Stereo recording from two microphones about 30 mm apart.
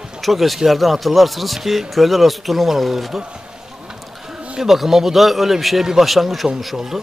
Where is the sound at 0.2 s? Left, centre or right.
Centre.